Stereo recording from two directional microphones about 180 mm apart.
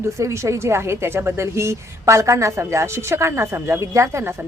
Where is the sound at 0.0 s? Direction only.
15° right (ahead or behind).